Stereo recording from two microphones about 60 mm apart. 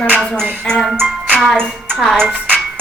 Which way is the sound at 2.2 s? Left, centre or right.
Right.